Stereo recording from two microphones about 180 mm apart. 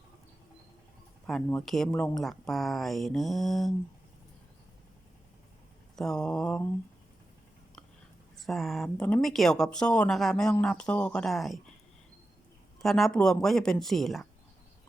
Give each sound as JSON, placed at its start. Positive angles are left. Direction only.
{"t": 1.3, "sound": "speech", "side_deg": 0}
{"t": 1.9, "sound": "a woman's voice", "side_deg": 15}
{"t": 2.1, "sound": "speech", "side_deg": 0}
{"t": 6.0, "sound": "speech", "side_deg": 5}
{"t": 8.4, "sound": "speech", "side_deg": 0}
{"t": 12.8, "sound": "speech", "side_deg": 0}